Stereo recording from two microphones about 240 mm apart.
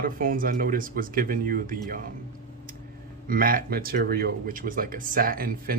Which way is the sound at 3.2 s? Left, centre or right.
Right.